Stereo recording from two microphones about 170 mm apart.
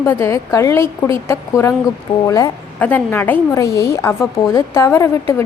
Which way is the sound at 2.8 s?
10° left (ahead or behind).